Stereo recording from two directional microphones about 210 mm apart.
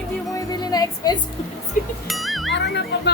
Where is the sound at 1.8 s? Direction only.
40° left (ahead or behind).